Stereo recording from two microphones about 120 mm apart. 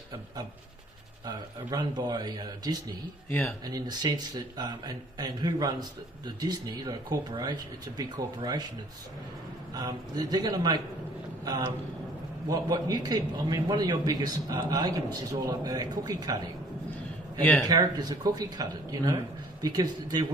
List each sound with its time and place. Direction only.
1.2 s a man's voice: 35° right (ahead or behind)
3.3 s speech: 10° left (ahead or behind)
3.6 s a man's voice: 35° right (ahead or behind)
9.8 s a man's voice: 35° right (ahead or behind)
17.6 s a man's voice: 35° right (ahead or behind)